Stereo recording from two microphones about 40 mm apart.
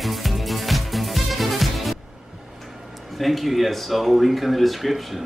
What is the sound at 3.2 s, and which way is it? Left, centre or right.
Speech, centre.